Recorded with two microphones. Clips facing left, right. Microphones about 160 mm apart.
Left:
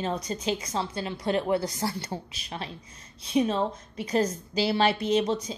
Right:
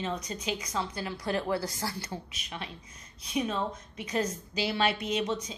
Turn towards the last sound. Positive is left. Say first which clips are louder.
# left 6 dB
turn(degrees=30)  # may be behind; listen again after turning